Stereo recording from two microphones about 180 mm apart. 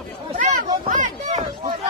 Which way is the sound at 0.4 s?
45° right (ahead or behind).